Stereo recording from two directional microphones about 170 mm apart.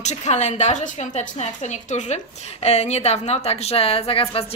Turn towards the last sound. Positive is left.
turn(degrees=35)  # may be behind; listen again after turning